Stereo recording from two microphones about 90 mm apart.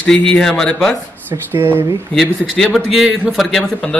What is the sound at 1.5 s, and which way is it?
Speech, 25° right (ahead or behind).